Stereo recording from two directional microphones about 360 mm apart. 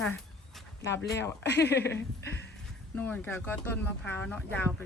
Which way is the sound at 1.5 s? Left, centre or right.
Left.